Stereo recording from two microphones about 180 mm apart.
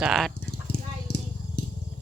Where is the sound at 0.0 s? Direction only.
Centre (ahead or behind).